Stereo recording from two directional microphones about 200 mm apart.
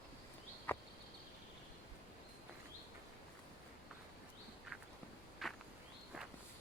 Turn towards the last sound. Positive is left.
turn(degrees=0)  # may be behind; listen again after turning